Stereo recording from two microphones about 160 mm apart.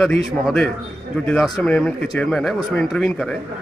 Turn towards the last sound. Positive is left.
turn(degrees=0)  # may be behind; listen again after turning